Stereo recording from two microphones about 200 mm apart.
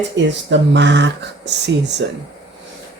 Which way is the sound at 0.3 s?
65° right (ahead or behind).